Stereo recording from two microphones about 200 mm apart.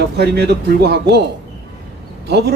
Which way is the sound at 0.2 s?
55° right (ahead or behind).